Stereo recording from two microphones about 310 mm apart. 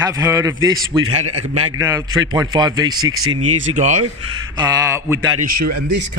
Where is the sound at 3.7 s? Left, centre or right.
Right.